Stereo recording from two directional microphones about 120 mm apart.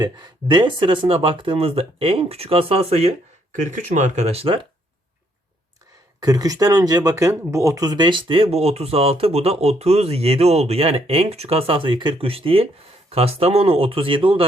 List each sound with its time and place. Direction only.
0.0 s speech: 40° right (ahead or behind); by 3.1 s 55° right (ahead or behind)
3.5 s speech: 90° right; by 4.6 s 55° right (ahead or behind)
6.1 s speech: 30° right (ahead or behind); by 14.4 s 45° right (ahead or behind)